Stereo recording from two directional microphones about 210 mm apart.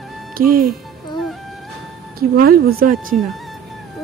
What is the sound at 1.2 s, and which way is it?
Music, centre (ahead or behind).